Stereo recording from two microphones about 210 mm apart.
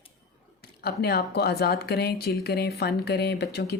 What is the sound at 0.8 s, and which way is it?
Speech, 50° left (ahead or behind).